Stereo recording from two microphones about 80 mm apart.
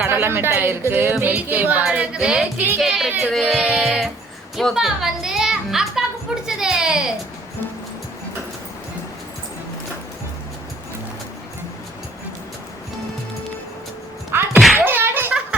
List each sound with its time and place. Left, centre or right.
0.1 s speech: right; by 2.5 s centre
2.6 s speech: right
2.8 s speech: centre
3.1 s speech: centre
3.6 s a woman's voice: centre
14.5 s thunk: centre
14.8 s a sound: right